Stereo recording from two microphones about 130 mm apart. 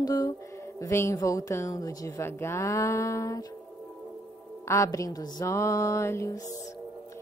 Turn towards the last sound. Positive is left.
turn(degrees=20)  # may be behind; listen again after turning